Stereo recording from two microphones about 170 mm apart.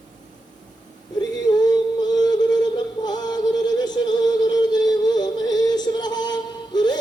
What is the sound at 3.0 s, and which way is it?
Music, 25° left (ahead or behind).